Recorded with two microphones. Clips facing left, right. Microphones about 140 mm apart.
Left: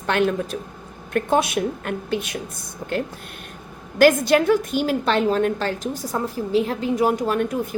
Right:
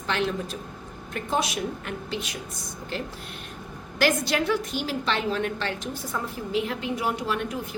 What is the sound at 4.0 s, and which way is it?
A woman's voice, 50° left (ahead or behind).